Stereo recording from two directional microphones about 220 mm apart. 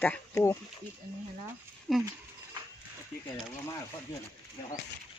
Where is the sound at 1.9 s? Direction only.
Centre (ahead or behind).